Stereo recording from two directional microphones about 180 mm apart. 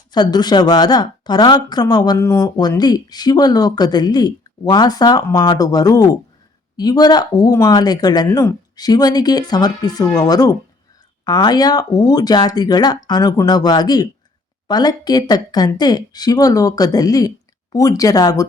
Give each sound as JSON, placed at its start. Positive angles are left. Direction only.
{"t": 0.1, "sound": "speech", "side_deg": 25}